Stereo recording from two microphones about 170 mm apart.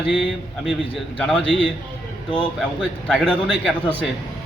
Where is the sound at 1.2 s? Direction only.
5° left (ahead or behind).